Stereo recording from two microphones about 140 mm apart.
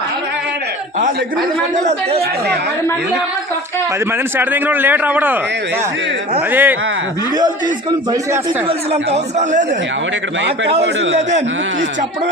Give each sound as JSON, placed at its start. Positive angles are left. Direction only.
{"t": 1.7, "sound": "speech", "side_deg": -50}
{"t": 4.4, "sound": "a man's voice", "side_deg": -15}
{"t": 6.5, "sound": "a man's voice", "side_deg": -15}
{"t": 8.6, "sound": "speech", "side_deg": -50}
{"t": 10.7, "sound": "speech", "side_deg": -50}